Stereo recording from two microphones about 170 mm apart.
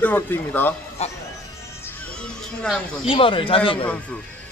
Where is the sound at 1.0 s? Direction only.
40° left (ahead or behind).